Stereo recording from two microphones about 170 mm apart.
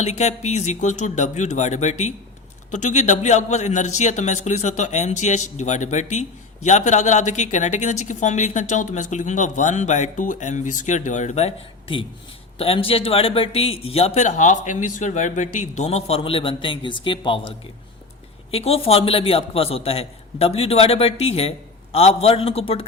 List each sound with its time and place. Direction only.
0.0 s a man's voice: 40° left (ahead or behind)
18.5 s a man's voice: 35° left (ahead or behind)